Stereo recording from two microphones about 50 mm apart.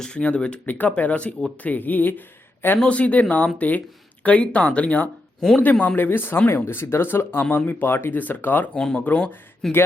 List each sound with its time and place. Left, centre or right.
0.0 s speech: left
0.6 s speech: left
2.8 s speech: left
5.4 s speech: centre
6.0 s speech: left
8.7 s speech: centre
9.0 s speech: left
9.6 s speech: centre